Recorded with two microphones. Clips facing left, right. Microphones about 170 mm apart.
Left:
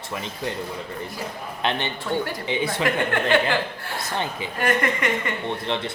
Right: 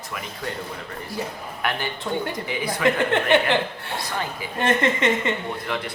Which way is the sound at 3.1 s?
20° right (ahead or behind).